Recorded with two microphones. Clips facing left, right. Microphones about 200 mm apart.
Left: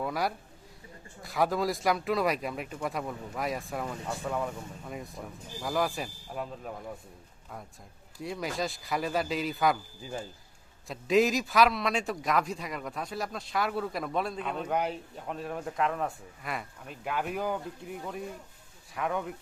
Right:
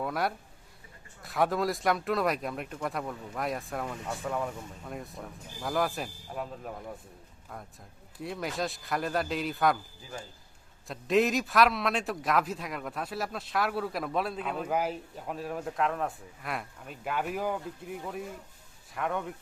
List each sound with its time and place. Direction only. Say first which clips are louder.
0.0 s a man's voice: even; centre (ahead or behind)
8.2 s a man's voice: even; centre (ahead or behind)
10.8 s a man's voice: left 1 dB; centre (ahead or behind)